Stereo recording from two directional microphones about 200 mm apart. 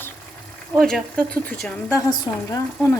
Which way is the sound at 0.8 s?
Centre (ahead or behind).